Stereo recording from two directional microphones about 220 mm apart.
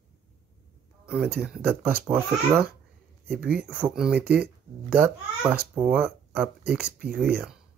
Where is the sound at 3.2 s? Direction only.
45° right (ahead or behind).